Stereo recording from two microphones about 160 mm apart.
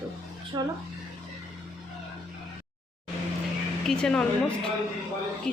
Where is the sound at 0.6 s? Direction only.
25° right (ahead or behind).